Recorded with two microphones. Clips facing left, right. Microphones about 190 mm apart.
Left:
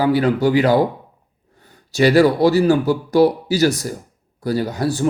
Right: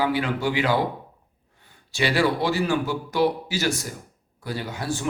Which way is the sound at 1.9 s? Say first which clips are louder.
Left 9 dB; 40° left (ahead or behind).